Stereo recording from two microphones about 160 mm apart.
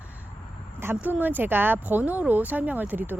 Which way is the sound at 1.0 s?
10° right (ahead or behind).